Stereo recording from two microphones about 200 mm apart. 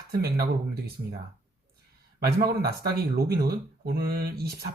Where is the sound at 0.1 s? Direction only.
50° right (ahead or behind).